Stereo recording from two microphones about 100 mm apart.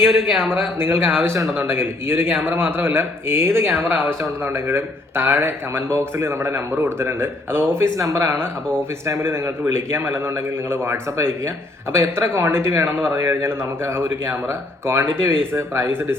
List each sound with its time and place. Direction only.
0.3 s speech: 20° right (ahead or behind)